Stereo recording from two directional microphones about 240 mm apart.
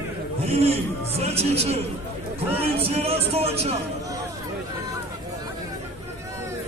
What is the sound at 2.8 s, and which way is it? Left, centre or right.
Speech, right.